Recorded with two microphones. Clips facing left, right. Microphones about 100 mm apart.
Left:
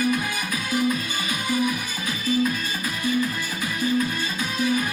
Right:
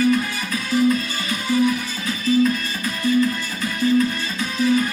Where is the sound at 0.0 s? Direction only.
10° left (ahead or behind).